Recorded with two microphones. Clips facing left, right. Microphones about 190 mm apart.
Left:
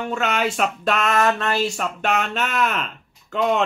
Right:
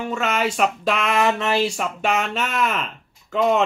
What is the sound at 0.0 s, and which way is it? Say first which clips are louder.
Speech: even; centre (ahead or behind).